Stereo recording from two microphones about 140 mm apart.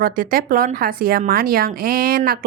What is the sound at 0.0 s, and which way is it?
Speech, 90° right.